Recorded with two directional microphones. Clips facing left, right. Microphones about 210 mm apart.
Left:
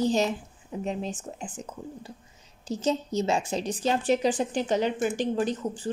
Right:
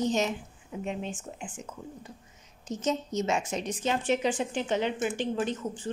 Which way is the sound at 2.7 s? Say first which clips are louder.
Left 3 dB; 35° left (ahead or behind).